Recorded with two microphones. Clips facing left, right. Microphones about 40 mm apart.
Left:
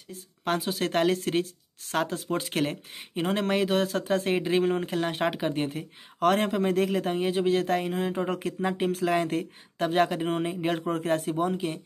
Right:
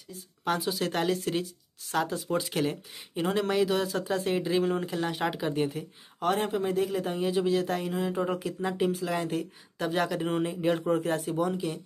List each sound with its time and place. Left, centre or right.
0.5 s speech: left
8.9 s speech: left
11.1 s speech: left
11.4 s speech: left